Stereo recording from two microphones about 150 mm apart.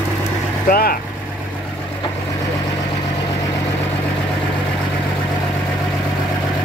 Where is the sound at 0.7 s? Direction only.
80° left.